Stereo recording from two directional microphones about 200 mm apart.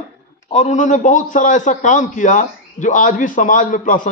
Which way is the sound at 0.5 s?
35° left (ahead or behind).